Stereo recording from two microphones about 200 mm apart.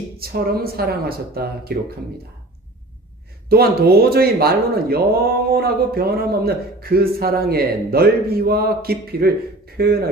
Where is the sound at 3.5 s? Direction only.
50° right (ahead or behind).